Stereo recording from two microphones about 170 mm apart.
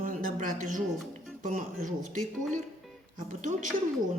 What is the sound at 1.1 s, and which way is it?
Speech, 45° right (ahead or behind).